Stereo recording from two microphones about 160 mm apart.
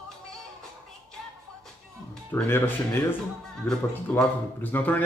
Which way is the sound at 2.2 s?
15° left (ahead or behind).